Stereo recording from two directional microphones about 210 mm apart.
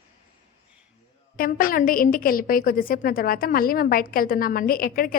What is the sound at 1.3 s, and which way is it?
A woman's voice, 45° left (ahead or behind).